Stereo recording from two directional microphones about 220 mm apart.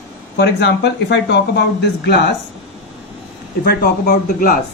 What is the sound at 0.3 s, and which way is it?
Speech, 50° left (ahead or behind).